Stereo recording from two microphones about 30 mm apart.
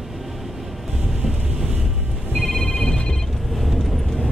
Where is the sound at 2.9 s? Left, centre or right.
Centre.